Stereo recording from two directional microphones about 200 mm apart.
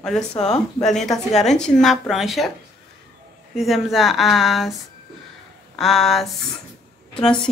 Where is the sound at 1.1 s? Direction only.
Centre (ahead or behind).